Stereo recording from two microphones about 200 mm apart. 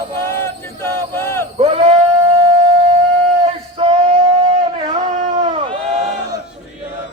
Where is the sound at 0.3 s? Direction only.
10° left (ahead or behind).